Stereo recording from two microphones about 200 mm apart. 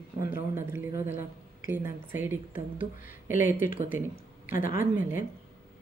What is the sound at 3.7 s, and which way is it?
Speech, 45° left (ahead or behind).